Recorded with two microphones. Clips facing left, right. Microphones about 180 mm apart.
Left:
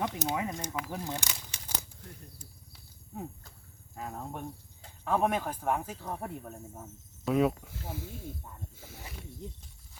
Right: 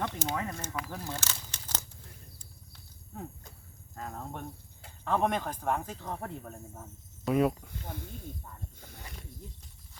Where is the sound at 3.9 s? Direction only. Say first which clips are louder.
Left 1 dB; 10° left (ahead or behind).